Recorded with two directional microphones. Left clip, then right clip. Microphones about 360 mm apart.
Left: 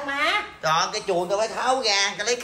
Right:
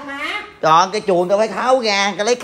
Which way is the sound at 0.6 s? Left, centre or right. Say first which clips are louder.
Right 13 dB; centre.